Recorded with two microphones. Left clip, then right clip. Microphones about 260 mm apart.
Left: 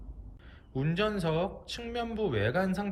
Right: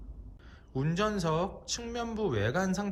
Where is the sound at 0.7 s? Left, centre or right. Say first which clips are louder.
Even; centre.